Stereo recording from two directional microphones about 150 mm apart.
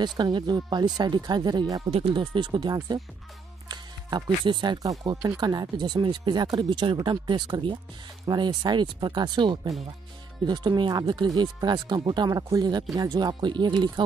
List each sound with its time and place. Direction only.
0.2 s speech: 30° right (ahead or behind)